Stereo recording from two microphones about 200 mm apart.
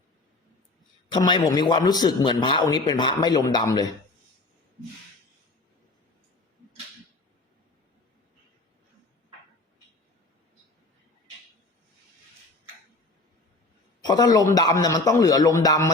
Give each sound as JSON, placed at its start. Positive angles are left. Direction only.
{"t": 1.1, "sound": "a man's voice", "side_deg": 20}
{"t": 14.0, "sound": "a man's voice", "side_deg": 20}